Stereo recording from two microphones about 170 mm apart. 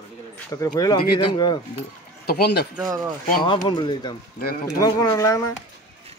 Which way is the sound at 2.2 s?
65° left (ahead or behind).